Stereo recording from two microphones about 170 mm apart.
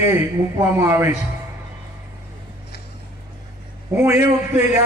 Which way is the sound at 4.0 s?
10° right (ahead or behind).